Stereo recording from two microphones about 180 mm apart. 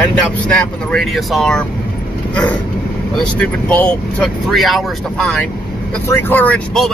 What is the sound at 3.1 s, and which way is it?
Speech, 5° left (ahead or behind).